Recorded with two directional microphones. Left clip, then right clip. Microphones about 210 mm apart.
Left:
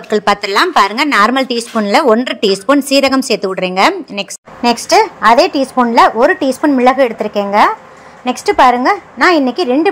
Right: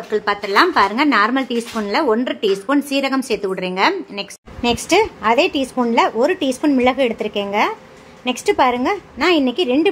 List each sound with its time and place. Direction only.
0.1 s a woman's voice: 30° left (ahead or behind)